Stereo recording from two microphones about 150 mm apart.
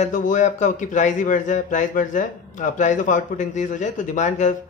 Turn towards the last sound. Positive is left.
turn(degrees=55)  # may be behind; listen again after turning